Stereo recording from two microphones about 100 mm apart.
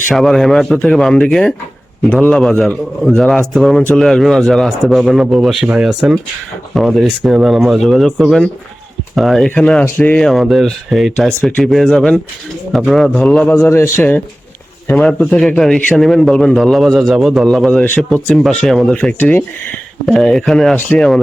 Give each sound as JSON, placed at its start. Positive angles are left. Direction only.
{"t": 0.1, "sound": "a man's voice", "side_deg": 0}
{"t": 10.2, "sound": "a man's voice", "side_deg": 0}
{"t": 14.9, "sound": "a man's voice", "side_deg": 10}
{"t": 18.9, "sound": "a man's voice", "side_deg": 15}
{"t": 20.1, "sound": "a man's voice", "side_deg": 5}